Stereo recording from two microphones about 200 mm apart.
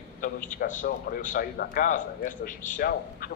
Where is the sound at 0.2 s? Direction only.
40° left (ahead or behind).